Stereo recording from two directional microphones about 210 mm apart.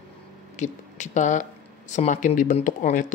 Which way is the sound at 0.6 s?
35° left (ahead or behind).